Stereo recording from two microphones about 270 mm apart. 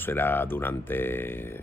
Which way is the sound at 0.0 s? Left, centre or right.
Centre.